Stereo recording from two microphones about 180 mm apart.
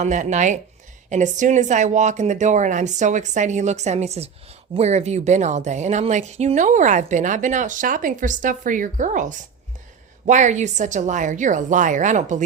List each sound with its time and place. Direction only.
0.0 s speech: 40° right (ahead or behind)